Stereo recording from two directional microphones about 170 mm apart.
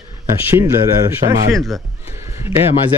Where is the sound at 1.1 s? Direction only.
15° right (ahead or behind).